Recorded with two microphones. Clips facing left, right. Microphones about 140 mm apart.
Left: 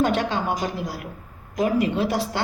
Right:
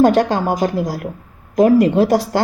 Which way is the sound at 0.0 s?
40° right (ahead or behind).